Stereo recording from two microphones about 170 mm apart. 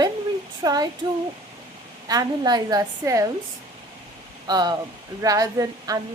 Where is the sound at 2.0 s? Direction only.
20° right (ahead or behind).